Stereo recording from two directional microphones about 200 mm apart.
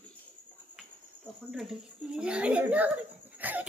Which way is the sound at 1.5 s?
5° right (ahead or behind).